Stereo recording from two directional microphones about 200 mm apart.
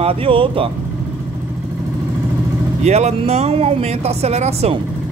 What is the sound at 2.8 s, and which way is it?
Speech, 35° right (ahead or behind).